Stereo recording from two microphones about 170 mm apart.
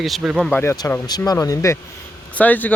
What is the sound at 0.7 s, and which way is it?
Speech, 25° left (ahead or behind).